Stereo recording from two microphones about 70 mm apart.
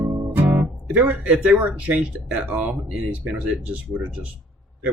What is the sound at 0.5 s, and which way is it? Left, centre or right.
Speech, right.